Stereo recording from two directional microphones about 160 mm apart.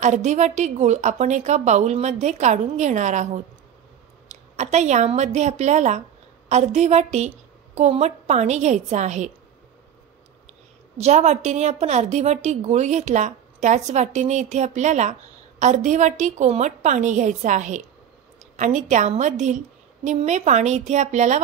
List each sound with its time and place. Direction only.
0.0 s a woman's voice: 50° right (ahead or behind)
4.6 s a woman's voice: 45° right (ahead or behind)
11.0 s a woman's voice: 45° right (ahead or behind)